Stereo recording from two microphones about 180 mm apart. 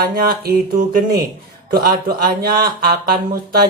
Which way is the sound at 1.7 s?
55° right (ahead or behind).